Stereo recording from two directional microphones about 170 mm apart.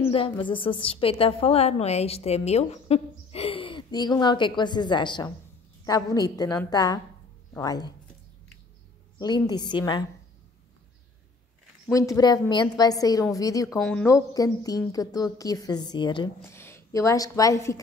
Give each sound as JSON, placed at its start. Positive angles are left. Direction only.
{"t": 0.1, "sound": "a woman's voice", "side_deg": 30}
{"t": 9.2, "sound": "a woman's voice", "side_deg": 25}
{"t": 11.9, "sound": "a woman's voice", "side_deg": 20}
{"t": 13.7, "sound": "a woman's voice", "side_deg": 5}
{"t": 14.0, "sound": "a woman's voice", "side_deg": 20}
{"t": 16.4, "sound": "a woman's voice", "side_deg": 15}